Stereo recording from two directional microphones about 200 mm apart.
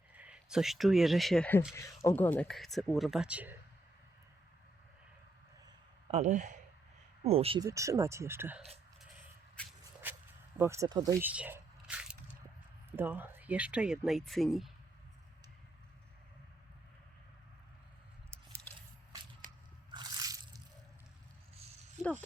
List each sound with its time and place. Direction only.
0.1 s speech: 5° right (ahead or behind)
6.1 s speech: 35° right (ahead or behind)
7.7 s speech: 15° right (ahead or behind)
10.0 s walk: 10° right (ahead or behind)
10.6 s speech: 15° right (ahead or behind)
18.3 s squish: 10° right (ahead or behind)
19.5 s a sound: 20° right (ahead or behind)